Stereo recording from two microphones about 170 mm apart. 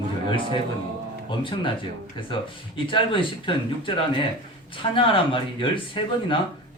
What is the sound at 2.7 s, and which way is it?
Speech, 30° left (ahead or behind).